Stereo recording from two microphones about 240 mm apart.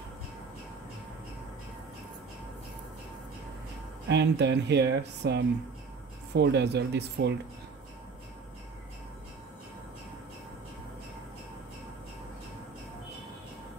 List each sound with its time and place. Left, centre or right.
4.1 s speech: right